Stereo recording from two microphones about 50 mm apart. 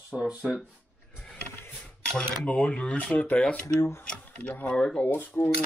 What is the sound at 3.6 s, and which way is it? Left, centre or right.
Speech, left.